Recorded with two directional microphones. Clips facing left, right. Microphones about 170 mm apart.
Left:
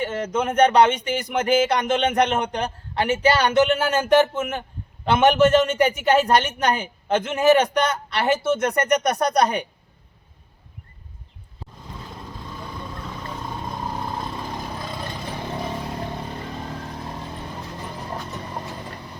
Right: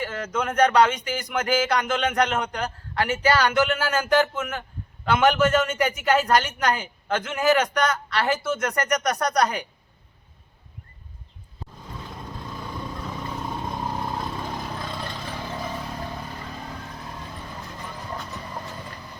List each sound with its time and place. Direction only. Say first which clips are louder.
0.0 s speech: left 4 dB; 25° left (ahead or behind)
13.2 s vehicle: even; centre (ahead or behind); by 17.5 s 30° left (ahead or behind)